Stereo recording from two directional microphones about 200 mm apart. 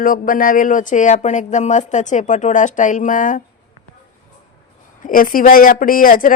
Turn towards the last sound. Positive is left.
turn(degrees=45)  # may be behind; listen again after turning